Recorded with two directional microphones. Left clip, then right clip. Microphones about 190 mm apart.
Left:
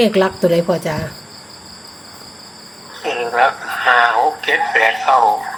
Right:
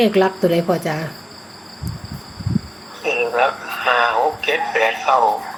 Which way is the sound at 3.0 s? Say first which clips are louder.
Left 2 dB; 25° left (ahead or behind).